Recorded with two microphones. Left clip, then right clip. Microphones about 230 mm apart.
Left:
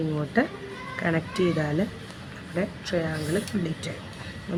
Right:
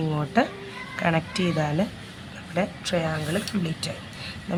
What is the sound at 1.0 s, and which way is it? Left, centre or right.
Speech, right.